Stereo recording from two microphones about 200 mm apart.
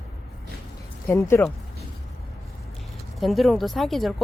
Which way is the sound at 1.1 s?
15° left (ahead or behind).